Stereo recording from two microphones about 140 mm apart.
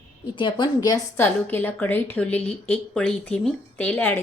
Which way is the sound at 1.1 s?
15° left (ahead or behind).